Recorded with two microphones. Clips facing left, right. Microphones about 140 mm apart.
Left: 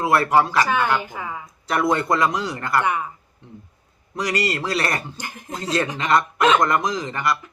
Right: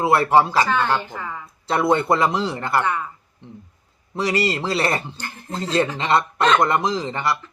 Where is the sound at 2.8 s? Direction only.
15° left (ahead or behind).